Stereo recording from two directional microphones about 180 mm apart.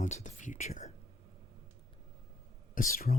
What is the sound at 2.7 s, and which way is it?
Speech, 50° left (ahead or behind).